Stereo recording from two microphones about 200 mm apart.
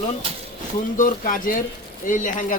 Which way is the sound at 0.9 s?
40° left (ahead or behind).